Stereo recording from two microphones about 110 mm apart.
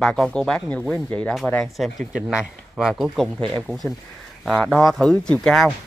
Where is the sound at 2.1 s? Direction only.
5° right (ahead or behind).